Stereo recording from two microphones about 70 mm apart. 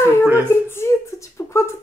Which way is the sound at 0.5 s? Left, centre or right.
Left.